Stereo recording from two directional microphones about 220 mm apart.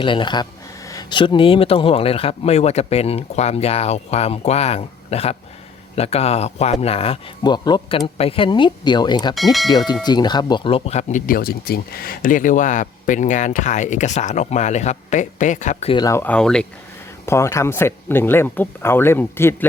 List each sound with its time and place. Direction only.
0.0 s speech: 20° left (ahead or behind)
9.3 s speech: centre (ahead or behind)
9.9 s speech: 20° left (ahead or behind)